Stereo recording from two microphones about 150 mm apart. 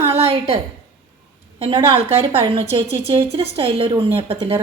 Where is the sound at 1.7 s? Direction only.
35° right (ahead or behind).